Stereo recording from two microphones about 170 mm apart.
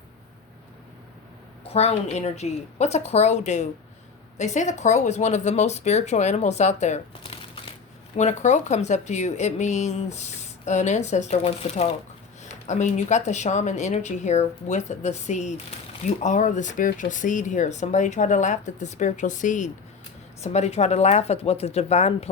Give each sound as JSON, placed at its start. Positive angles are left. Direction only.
{"t": 1.6, "sound": "a woman's voice", "side_deg": 40}